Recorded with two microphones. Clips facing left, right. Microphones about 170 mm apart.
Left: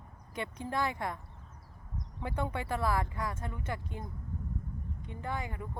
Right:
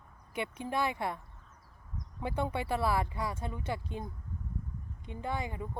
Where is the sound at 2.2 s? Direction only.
25° right (ahead or behind).